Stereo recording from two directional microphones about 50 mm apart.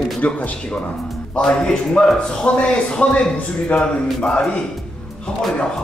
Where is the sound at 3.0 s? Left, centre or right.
Left.